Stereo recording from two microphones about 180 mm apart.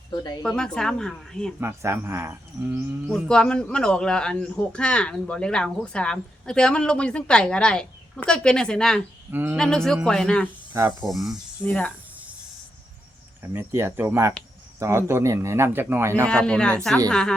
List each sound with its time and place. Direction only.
0.1 s a woman's voice: 25° left (ahead or behind)
0.4 s speech: 5° left (ahead or behind)
1.6 s a man's voice: 15° right (ahead or behind)
3.1 s speech: 5° left (ahead or behind)
9.3 s a man's voice: 10° right (ahead or behind)
9.6 s speech: 5° left (ahead or behind)
10.7 s speech: 10° right (ahead or behind)
11.0 s speech: centre (ahead or behind)
13.4 s a man's voice: 15° right (ahead or behind)
16.3 s speech: 5° left (ahead or behind)